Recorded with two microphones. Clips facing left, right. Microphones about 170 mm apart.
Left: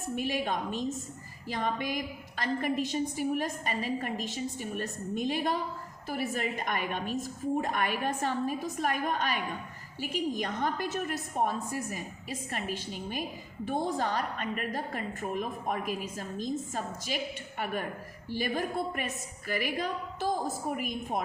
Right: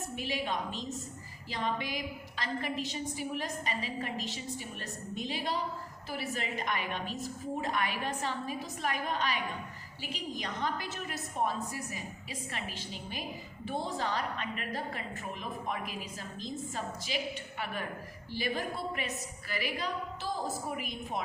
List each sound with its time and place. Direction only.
0.2 s a woman's voice: 50° left (ahead or behind)
18.3 s a woman's voice: 50° left (ahead or behind)